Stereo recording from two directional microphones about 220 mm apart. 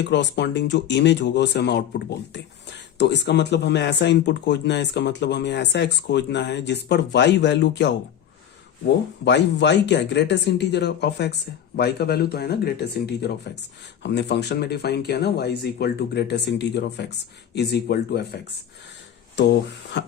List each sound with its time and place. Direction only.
0.1 s speech: 55° left (ahead or behind)
9.2 s speech: 50° left (ahead or behind)
19.4 s speech: 50° left (ahead or behind)